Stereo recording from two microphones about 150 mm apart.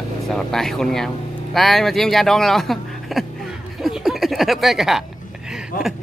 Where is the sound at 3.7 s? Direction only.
Centre (ahead or behind).